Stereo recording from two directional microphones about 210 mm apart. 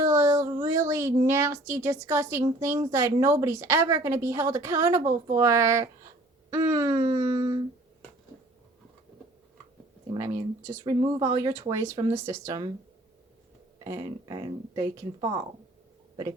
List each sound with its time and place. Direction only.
0.0 s a sound: 15° right (ahead or behind)
2.6 s a woman's voice: 15° right (ahead or behind)
10.2 s a woman's voice: 15° right (ahead or behind)
13.8 s a woman's voice: 15° right (ahead or behind)